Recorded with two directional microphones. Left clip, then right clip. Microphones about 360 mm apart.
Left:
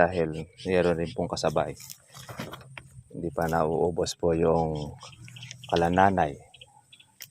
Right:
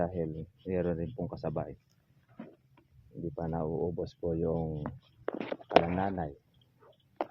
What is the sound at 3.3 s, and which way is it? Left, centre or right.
Speech, centre.